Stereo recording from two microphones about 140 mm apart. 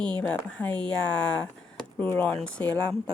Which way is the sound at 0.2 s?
10° left (ahead or behind).